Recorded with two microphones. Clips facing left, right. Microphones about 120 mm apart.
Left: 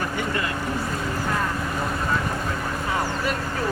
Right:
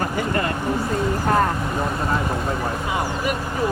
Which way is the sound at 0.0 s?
45° right (ahead or behind).